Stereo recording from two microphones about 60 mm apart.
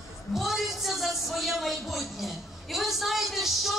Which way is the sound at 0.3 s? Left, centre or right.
Centre.